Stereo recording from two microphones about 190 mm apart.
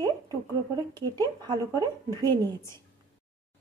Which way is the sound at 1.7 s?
15° left (ahead or behind).